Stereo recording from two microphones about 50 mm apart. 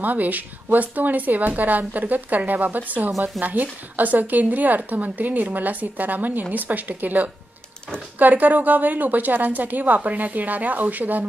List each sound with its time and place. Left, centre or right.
0.0 s speech: right